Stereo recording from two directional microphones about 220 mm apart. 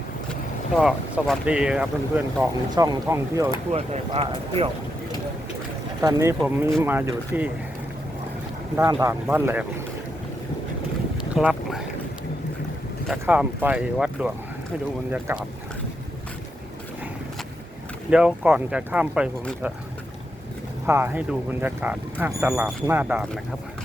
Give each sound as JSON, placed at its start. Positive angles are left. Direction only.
{"t": 0.8, "sound": "speech", "side_deg": 0}
{"t": 3.7, "sound": "speech", "side_deg": -25}
{"t": 6.0, "sound": "speech", "side_deg": -15}
{"t": 8.7, "sound": "speech", "side_deg": -15}
{"t": 11.3, "sound": "boat", "side_deg": 0}
{"t": 13.1, "sound": "speech", "side_deg": -5}
{"t": 18.1, "sound": "speech", "side_deg": -5}
{"t": 20.8, "sound": "speech", "side_deg": -10}